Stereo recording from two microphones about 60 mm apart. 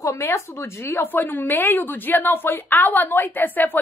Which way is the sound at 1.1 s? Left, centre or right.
Left.